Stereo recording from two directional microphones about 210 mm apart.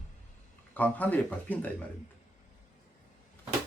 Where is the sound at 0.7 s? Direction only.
10° left (ahead or behind).